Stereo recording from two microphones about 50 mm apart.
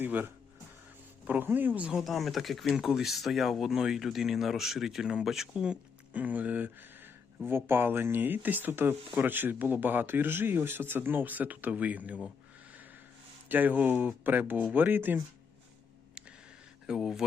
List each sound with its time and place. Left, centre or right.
0.0 s speech: right
1.3 s speech: right
2.0 s speech: centre
2.7 s speech: centre
6.1 s speech: right
7.4 s speech: right
13.5 s speech: right
17.0 s speech: centre